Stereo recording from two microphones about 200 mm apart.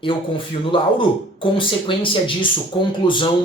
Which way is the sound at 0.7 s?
25° left (ahead or behind).